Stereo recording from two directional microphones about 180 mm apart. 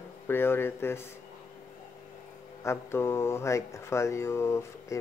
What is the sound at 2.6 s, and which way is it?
Speech, 15° left (ahead or behind).